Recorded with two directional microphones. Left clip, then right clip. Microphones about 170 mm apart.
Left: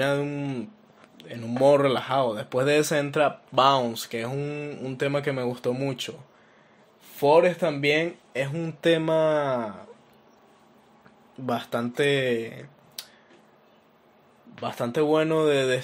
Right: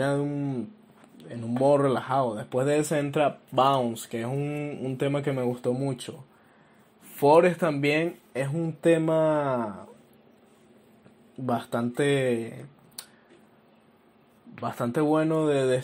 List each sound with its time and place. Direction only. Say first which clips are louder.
0.2 s speech: even; 15° left (ahead or behind)
1.1 s a sound: left 1 dB; 10° left (ahead or behind)
1.6 s speech: left 3 dB; 20° left (ahead or behind)
7.3 s speech: left 2 dB; 10° left (ahead or behind)
7.8 s speech: left 3 dB; 25° left (ahead or behind)
8.4 s speech: left 1 dB; 10° left (ahead or behind)
11.4 s speech: left 1 dB; 5° left (ahead or behind)
14.6 s speech: left 2 dB; 10° left (ahead or behind)